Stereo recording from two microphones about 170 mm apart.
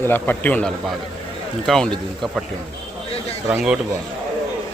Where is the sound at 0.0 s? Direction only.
10° left (ahead or behind).